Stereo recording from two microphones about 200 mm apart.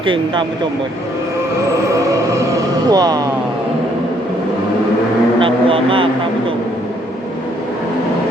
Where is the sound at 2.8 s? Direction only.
20° right (ahead or behind).